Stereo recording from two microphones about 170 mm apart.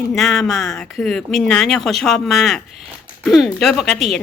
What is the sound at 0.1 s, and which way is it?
Speech, centre (ahead or behind).